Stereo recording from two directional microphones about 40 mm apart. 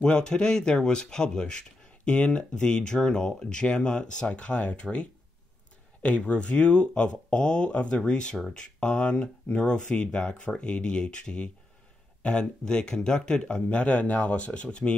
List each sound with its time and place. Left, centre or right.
0.0 s speech: left
6.0 s speech: left